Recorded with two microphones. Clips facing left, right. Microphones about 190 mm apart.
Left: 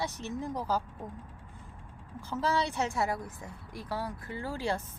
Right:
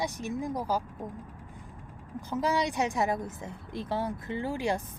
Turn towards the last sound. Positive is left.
turn(degrees=-15)  # may be behind; listen again after turning